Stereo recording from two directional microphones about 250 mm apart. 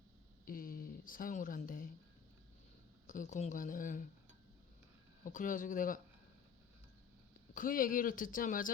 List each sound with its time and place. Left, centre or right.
0.4 s a sound: left
3.1 s speech: left
5.2 s speech: left
7.5 s speech: left